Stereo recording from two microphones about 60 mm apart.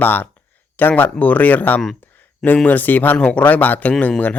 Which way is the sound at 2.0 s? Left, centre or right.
Left.